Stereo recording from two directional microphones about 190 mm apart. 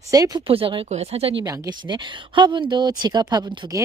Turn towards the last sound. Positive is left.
turn(degrees=-20)  # may be behind; listen again after turning